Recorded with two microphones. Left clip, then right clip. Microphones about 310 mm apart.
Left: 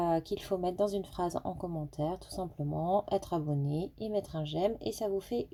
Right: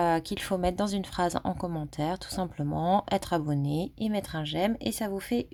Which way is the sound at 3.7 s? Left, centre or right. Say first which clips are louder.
Right 4 dB; right.